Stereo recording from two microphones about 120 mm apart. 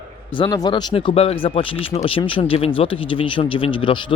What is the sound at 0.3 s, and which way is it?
Speech, 40° left (ahead or behind).